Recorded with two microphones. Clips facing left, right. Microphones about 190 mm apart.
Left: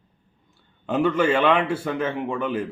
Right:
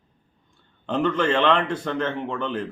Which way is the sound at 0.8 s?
5° left (ahead or behind).